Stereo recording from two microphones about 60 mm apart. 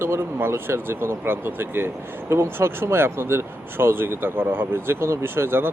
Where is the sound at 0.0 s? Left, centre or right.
Right.